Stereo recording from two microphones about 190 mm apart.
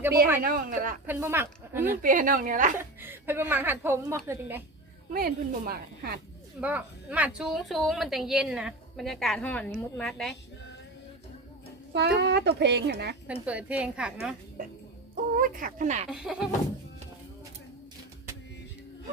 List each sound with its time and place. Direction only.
0.4 s a woman's voice: 45° right (ahead or behind)
1.0 s a woman's voice: 10° right (ahead or behind)
2.0 s a woman's voice: 45° right (ahead or behind)
2.7 s a woman's voice: 10° right (ahead or behind)
5.1 s a woman's voice: 50° right (ahead or behind)
6.6 s a woman's voice: 5° right (ahead or behind)
11.9 s a child's voice: 60° right (ahead or behind)
13.2 s a woman's voice: 5° right (ahead or behind)
15.1 s speech: 45° right (ahead or behind)
16.0 s a woman's voice: 5° right (ahead or behind)